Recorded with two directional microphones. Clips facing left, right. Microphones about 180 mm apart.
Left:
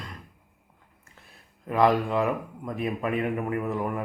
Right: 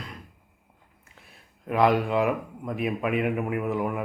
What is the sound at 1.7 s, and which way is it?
A man's voice, centre (ahead or behind).